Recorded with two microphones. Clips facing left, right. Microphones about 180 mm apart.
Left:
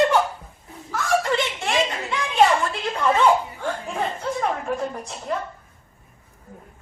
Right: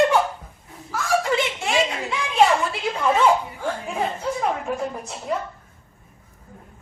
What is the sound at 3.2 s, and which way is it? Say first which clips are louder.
Chuckle: left 1 dB; 5° right (ahead or behind).